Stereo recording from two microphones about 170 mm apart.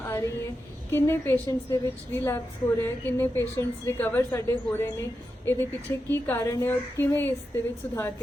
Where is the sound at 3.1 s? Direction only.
15° left (ahead or behind).